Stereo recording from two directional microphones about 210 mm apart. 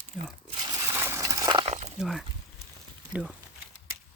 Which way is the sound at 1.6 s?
30° right (ahead or behind).